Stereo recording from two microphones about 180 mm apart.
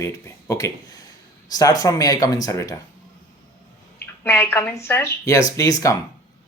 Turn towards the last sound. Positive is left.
turn(degrees=20)  # may be behind; listen again after turning